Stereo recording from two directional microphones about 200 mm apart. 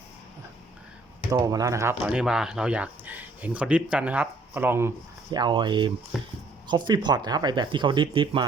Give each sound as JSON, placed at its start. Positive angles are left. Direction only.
{"t": 1.3, "sound": "speech", "side_deg": -15}
{"t": 5.3, "sound": "speech", "side_deg": -20}
{"t": 6.1, "sound": "speech", "side_deg": 0}
{"t": 6.7, "sound": "speech", "side_deg": -20}